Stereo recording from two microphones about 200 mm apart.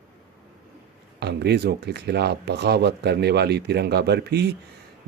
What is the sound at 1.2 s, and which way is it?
Speech, 55° right (ahead or behind).